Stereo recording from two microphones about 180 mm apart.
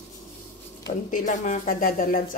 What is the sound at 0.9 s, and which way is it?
Speech, 45° left (ahead or behind).